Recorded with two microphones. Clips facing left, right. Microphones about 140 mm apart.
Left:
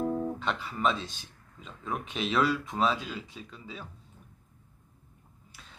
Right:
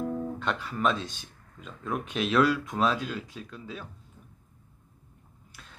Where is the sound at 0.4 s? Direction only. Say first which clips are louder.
Right 1 dB; centre (ahead or behind).